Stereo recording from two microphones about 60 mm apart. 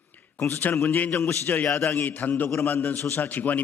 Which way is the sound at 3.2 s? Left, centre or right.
Left.